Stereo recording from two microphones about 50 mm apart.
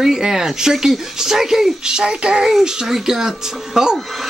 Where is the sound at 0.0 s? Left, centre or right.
Centre.